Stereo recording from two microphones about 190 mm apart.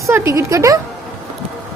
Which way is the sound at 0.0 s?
15° right (ahead or behind).